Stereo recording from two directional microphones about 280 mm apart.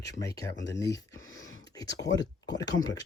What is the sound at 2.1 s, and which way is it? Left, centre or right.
Speech, left.